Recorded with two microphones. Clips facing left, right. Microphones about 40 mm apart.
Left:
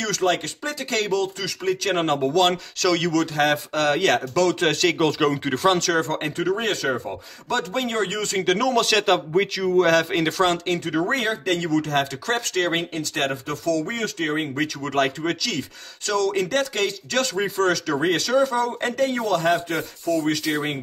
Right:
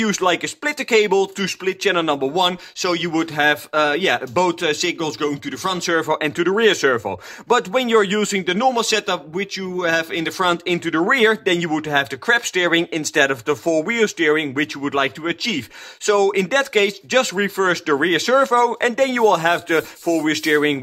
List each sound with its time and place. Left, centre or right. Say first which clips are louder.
0.0 s speech: right 4 dB; right
2.1 s speech: right 1 dB; centre
3.1 s speech: right 3 dB; right
4.6 s a man's voice: even; centre
4.9 s speech: left 2 dB; centre
5.9 s speech: right 4 dB; right
6.7 s speech: right 7 dB; right
7.7 s speech: right 8 dB; right
8.5 s a man's voice: even; centre
10.8 s speech: right 7 dB; right
12.7 s speech: right 8 dB; right
13.7 s speech: right 5 dB; right
14.8 s speech: right 2 dB; right
16.1 s speech: right 6 dB; right